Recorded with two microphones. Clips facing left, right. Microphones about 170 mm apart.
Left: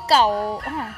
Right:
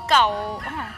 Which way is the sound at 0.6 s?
35° left (ahead or behind).